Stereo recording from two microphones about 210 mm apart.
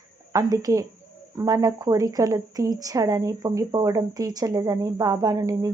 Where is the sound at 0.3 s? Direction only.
15° right (ahead or behind).